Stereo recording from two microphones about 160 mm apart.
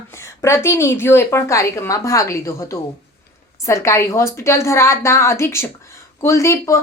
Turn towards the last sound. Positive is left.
turn(degrees=20)  # may be behind; listen again after turning